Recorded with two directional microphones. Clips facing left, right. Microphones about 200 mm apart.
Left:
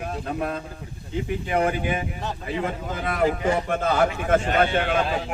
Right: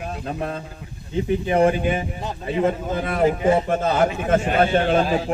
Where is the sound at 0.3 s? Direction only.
30° right (ahead or behind).